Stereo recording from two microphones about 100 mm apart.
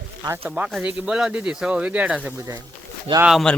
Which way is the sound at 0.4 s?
20° right (ahead or behind).